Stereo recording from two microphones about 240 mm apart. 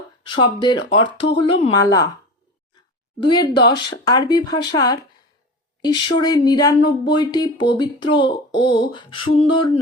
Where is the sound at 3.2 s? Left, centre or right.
Centre.